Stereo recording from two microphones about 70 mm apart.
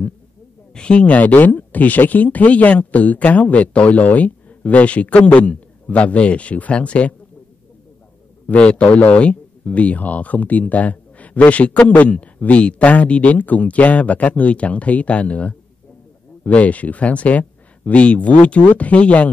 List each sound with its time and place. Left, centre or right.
0.7 s speech: centre
8.5 s speech: centre